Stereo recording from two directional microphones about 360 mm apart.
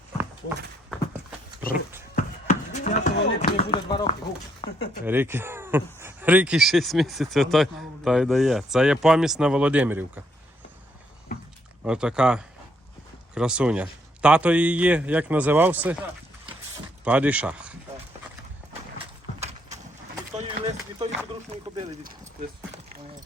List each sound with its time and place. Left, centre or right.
1.5 s dog: centre
2.1 s a sound: centre
4.6 s speech: centre
5.0 s speech: centre
11.8 s speech: centre
17.0 s speech: centre
20.3 s a sound: centre
21.8 s speech: centre